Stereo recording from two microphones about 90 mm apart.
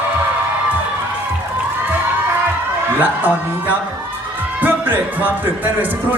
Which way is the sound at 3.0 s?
20° right (ahead or behind).